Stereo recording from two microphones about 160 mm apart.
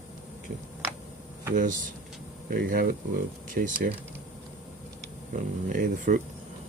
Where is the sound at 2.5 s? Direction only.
65° right (ahead or behind).